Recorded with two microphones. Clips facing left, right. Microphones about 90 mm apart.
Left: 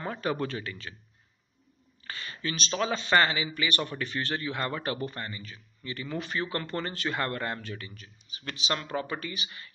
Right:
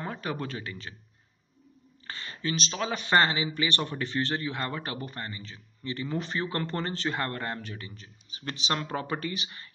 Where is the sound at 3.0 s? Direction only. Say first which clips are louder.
Right 2 dB; 30° right (ahead or behind).